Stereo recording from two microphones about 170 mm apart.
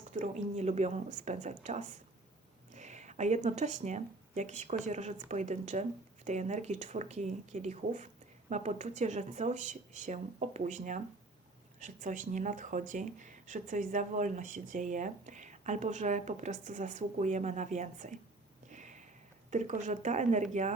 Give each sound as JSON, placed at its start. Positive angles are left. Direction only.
{"t": 0.1, "sound": "speech", "side_deg": -40}
{"t": 18.7, "sound": "a sound", "side_deg": -45}
{"t": 19.5, "sound": "speech", "side_deg": -45}